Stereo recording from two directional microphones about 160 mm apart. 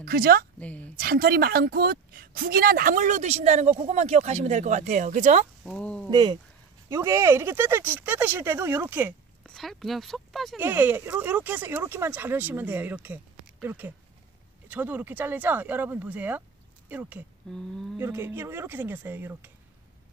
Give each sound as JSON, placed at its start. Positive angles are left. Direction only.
{"t": 0.0, "sound": "a woman's voice", "side_deg": -70}
{"t": 0.6, "sound": "a woman's voice", "side_deg": 10}
{"t": 0.9, "sound": "a woman's voice", "side_deg": -75}
{"t": 5.6, "sound": "speech", "side_deg": 5}
{"t": 6.0, "sound": "speech", "side_deg": -30}
{"t": 6.9, "sound": "speech", "side_deg": -20}
{"t": 9.4, "sound": "speech", "side_deg": 0}
{"t": 10.6, "sound": "speech", "side_deg": -15}
{"t": 17.5, "sound": "speech", "side_deg": 5}
{"t": 17.9, "sound": "speech", "side_deg": -15}